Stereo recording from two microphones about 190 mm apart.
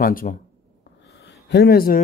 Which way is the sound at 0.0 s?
45° left (ahead or behind).